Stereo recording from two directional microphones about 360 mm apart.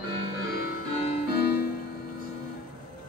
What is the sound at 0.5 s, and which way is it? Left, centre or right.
Music, left.